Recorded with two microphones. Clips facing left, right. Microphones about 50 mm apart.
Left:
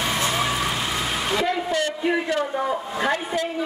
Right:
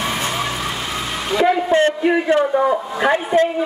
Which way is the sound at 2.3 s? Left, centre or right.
Right.